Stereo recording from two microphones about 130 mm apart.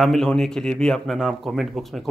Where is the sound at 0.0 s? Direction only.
Centre (ahead or behind).